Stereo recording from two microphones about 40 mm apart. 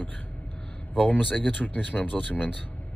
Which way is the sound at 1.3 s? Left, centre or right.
Left.